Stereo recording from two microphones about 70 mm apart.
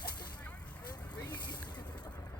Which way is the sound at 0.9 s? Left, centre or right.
Left.